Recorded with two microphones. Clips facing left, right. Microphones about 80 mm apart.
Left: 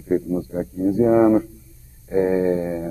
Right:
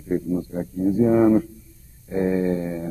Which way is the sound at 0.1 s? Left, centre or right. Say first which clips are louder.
Left 2 dB; centre.